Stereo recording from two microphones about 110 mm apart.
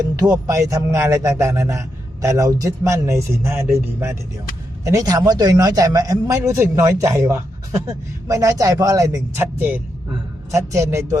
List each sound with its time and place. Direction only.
0.0 s speech: 35° right (ahead or behind)
4.8 s speech: 30° right (ahead or behind); by 9.8 s 15° right (ahead or behind)
10.5 s speech: 25° right (ahead or behind)